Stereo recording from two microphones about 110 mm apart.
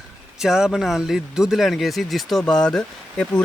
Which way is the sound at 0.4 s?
5° right (ahead or behind).